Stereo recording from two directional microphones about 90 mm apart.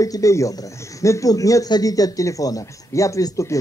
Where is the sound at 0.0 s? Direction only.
40° left (ahead or behind).